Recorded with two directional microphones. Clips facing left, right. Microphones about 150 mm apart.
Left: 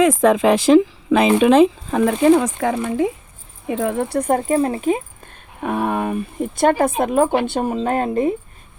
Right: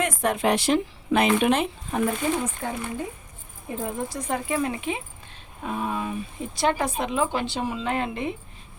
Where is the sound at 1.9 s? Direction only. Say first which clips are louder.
Left 11 dB; 90° left.